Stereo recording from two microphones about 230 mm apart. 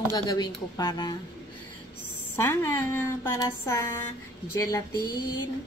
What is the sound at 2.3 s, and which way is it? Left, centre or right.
Speech, centre.